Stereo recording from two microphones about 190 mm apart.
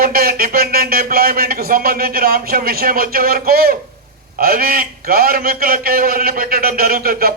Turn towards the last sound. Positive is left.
turn(degrees=-50)  # may be behind; listen again after turning